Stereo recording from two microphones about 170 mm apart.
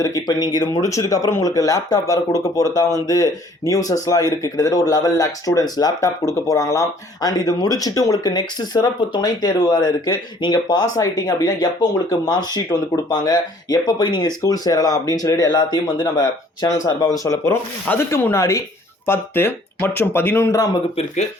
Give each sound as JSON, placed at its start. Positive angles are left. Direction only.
{"t": 0.0, "sound": "speech", "side_deg": 20}